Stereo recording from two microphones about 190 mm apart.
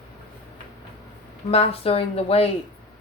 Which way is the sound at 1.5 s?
30° left (ahead or behind).